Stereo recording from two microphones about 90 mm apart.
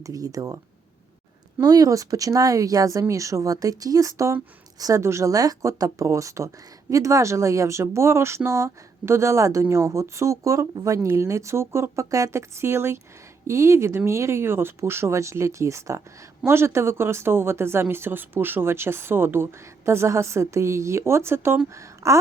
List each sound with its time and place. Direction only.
0.0 s a woman's voice: 40° right (ahead or behind)
1.6 s a woman's voice: 45° right (ahead or behind)